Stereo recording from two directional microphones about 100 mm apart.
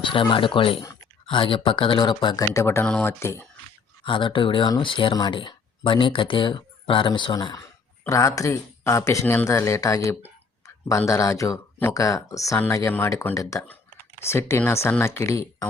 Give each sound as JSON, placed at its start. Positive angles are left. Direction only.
{"t": 0.0, "sound": "speech", "side_deg": 55}
{"t": 2.5, "sound": "speech", "side_deg": 30}
{"t": 2.8, "sound": "speech", "side_deg": 10}
{"t": 3.1, "sound": "speech", "side_deg": 25}
{"t": 4.0, "sound": "speech", "side_deg": 55}
{"t": 7.3, "sound": "speech", "side_deg": 40}
{"t": 9.2, "sound": "speech", "side_deg": 20}